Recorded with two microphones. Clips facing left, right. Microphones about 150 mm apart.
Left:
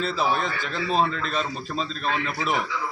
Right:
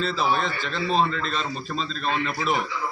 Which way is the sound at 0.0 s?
10° left (ahead or behind).